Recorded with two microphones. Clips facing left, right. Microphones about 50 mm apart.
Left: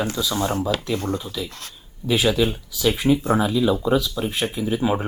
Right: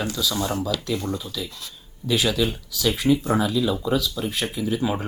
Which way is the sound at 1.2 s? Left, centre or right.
Left.